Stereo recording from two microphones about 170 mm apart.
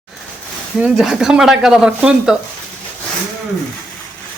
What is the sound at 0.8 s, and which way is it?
Speech, 5° right (ahead or behind).